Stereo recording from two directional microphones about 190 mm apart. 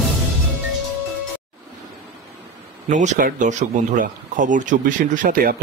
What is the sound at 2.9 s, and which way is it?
A man's voice, 40° right (ahead or behind).